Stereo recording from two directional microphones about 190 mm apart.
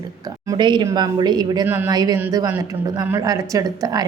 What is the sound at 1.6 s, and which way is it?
Speech, 10° right (ahead or behind).